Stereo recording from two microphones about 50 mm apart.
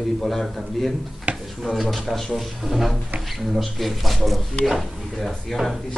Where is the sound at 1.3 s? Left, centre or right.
Right.